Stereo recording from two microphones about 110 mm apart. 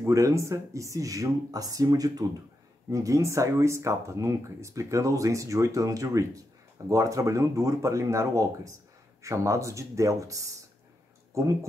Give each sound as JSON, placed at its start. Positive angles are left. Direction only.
{"t": 0.0, "sound": "speech", "side_deg": -25}